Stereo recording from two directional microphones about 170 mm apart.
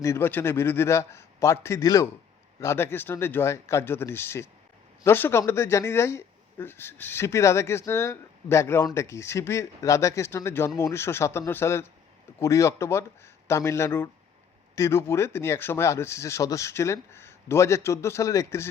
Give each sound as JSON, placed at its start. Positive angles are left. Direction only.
{"t": 0.0, "sound": "speech", "side_deg": 15}